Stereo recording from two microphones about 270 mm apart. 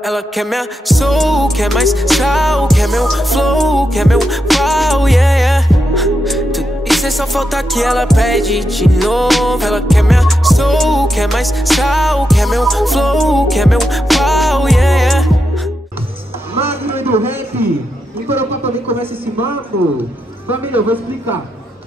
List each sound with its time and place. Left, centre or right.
0.0 s music: centre
16.5 s a sound: centre
18.6 s speech: right
20.4 s a man's voice: centre